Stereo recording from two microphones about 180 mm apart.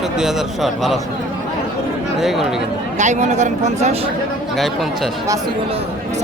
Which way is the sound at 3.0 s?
40° right (ahead or behind).